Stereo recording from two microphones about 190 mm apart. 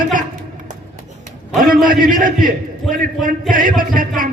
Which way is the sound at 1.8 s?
45° right (ahead or behind).